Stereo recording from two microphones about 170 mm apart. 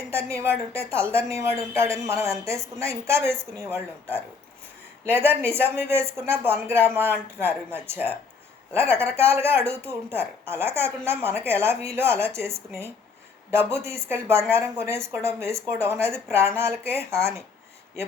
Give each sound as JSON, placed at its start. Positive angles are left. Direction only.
{"t": 0.1, "sound": "a woman's voice", "side_deg": -15}